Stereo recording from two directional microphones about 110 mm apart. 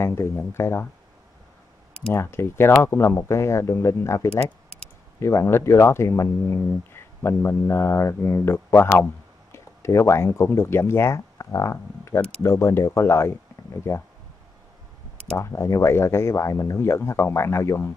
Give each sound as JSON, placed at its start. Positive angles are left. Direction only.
{"t": 0.0, "sound": "speech", "side_deg": 25}
{"t": 2.1, "sound": "speech", "side_deg": 20}
{"t": 15.3, "sound": "speech", "side_deg": 25}